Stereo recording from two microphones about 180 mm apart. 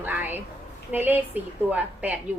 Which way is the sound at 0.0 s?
10° right (ahead or behind).